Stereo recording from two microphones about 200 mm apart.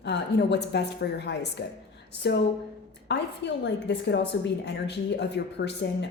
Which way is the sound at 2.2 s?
60° left (ahead or behind).